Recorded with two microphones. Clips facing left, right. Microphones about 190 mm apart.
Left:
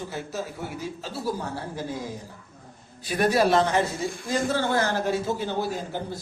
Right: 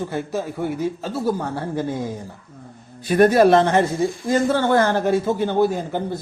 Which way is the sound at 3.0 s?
55° right (ahead or behind).